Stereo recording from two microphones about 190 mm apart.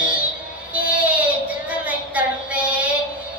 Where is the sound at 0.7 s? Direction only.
5° right (ahead or behind).